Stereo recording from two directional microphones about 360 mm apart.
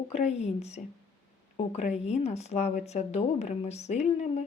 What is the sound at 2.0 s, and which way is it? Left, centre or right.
A woman's voice, centre.